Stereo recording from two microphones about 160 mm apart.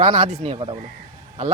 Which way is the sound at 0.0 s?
45° right (ahead or behind).